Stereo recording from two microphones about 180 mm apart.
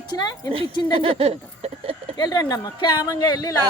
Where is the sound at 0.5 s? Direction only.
30° right (ahead or behind).